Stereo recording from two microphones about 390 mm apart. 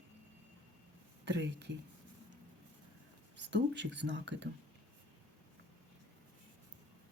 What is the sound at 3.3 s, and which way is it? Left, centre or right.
Speech, right.